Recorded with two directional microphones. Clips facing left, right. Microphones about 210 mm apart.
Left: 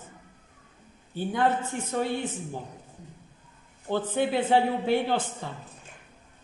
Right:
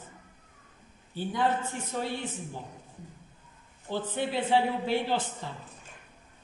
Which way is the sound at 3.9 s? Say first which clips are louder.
Left 5 dB; 55° left (ahead or behind).